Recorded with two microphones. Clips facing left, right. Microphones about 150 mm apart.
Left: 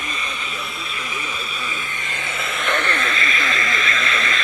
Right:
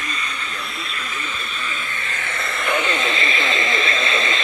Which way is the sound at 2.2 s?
5° left (ahead or behind).